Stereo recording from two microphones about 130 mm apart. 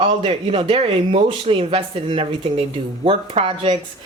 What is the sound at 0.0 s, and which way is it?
Speech, 50° right (ahead or behind).